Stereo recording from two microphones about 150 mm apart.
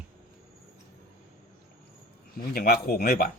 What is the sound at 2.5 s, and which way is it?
Speech, 85° left.